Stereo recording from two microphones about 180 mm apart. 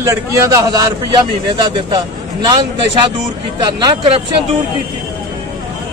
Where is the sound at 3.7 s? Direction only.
30° right (ahead or behind).